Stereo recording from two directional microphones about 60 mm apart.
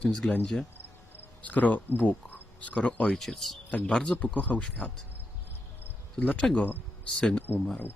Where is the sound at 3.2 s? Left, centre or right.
Centre.